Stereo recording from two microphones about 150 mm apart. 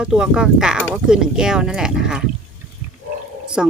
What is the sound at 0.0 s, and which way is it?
Speech, 5° right (ahead or behind).